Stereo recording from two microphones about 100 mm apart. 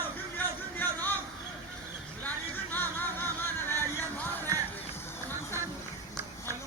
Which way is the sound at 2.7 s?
20° left (ahead or behind).